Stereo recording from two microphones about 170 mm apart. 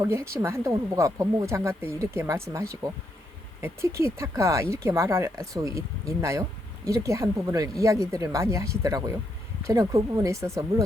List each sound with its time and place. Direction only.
0.0 s speech: 15° right (ahead or behind)